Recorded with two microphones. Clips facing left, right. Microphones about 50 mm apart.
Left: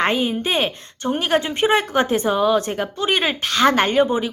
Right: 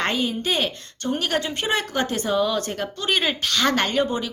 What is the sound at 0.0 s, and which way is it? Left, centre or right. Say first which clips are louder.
A woman's voice: left 4 dB; centre.